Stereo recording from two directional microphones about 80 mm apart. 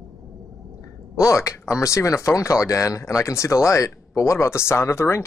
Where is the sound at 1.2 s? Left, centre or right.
Left.